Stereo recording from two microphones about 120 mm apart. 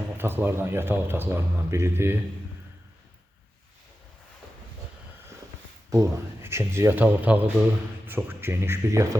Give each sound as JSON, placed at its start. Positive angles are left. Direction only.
{"t": 0.2, "sound": "speech", "side_deg": -20}
{"t": 5.9, "sound": "speech", "side_deg": -25}